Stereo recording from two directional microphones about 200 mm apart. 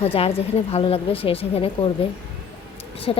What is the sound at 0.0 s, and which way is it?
Speech, 30° left (ahead or behind).